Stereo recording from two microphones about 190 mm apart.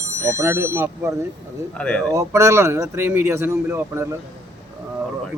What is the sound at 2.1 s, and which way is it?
Speech, 15° right (ahead or behind).